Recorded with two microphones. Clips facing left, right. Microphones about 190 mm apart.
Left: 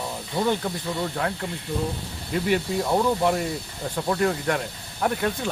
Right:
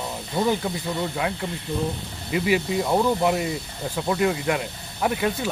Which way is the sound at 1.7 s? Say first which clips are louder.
Right 1 dB; 20° right (ahead or behind).